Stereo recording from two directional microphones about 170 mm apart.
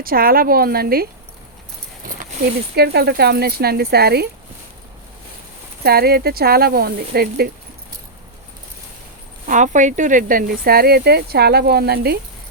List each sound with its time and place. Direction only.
0.0 s speech: 60° right (ahead or behind)
2.7 s speech: 70° right (ahead or behind)
5.8 s speech: 65° right (ahead or behind)
9.5 s speech: 45° right (ahead or behind); by 12.2 s 70° right (ahead or behind)